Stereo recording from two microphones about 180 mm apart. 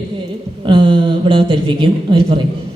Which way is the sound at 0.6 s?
30° right (ahead or behind).